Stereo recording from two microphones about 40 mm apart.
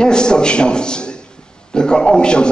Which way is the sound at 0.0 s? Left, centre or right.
Left.